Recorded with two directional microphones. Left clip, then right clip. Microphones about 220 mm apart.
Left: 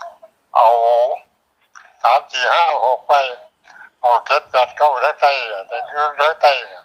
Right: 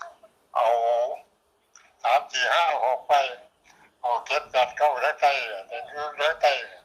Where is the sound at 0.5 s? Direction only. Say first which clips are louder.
Left 10 dB; 35° left (ahead or behind).